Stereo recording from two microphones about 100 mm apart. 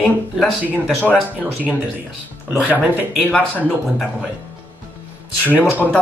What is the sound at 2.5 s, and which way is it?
Speech, 15° right (ahead or behind).